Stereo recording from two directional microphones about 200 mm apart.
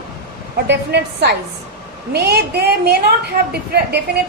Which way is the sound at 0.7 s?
55° right (ahead or behind).